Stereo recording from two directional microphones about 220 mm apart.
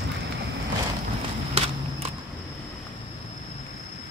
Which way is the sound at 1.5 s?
25° right (ahead or behind).